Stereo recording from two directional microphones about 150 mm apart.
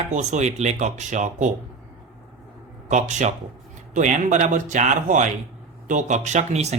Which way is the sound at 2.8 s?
55° right (ahead or behind).